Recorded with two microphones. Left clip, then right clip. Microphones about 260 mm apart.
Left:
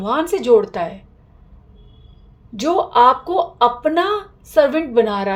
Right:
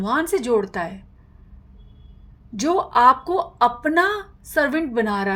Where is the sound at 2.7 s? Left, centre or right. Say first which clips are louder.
Left 3 dB; right.